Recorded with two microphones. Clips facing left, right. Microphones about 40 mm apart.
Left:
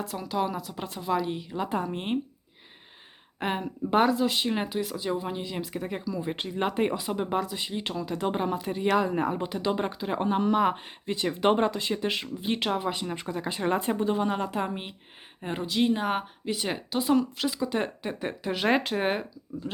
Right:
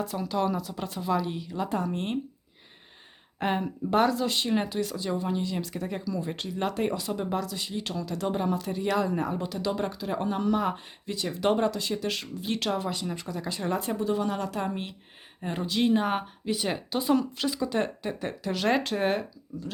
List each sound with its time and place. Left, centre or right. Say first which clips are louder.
0.0 s speech: right 1 dB; centre
3.4 s speech: right 2 dB; centre
15.6 s speech: right 1 dB; centre